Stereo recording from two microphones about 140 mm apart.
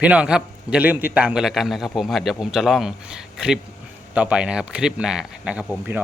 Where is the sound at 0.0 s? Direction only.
10° right (ahead or behind).